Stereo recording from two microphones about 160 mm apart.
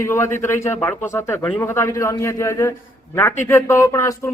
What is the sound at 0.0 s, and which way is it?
A man's voice, 15° left (ahead or behind).